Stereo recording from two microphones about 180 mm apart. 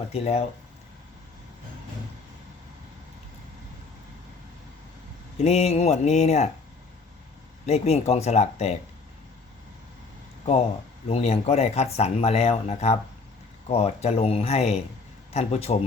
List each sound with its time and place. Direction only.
0.1 s speech: 35° left (ahead or behind)
5.4 s speech: 35° left (ahead or behind)
7.7 s speech: 35° left (ahead or behind)
11.1 s speech: 35° left (ahead or behind)